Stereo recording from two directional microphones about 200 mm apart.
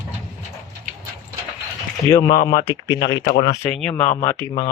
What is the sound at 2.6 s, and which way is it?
Speech, 15° left (ahead or behind).